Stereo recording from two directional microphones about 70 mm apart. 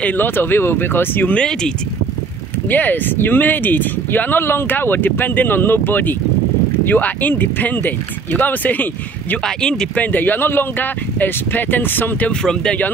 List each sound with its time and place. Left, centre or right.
0.0 s speech: left
1.3 s speech: centre
2.7 s speech: left
9.4 s speech: centre
9.9 s speech: left
12.3 s speech: centre